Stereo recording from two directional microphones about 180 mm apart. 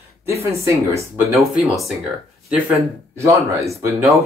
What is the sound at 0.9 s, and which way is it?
Speech, 15° right (ahead or behind).